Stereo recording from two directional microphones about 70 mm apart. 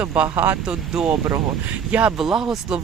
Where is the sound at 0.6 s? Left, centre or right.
Centre.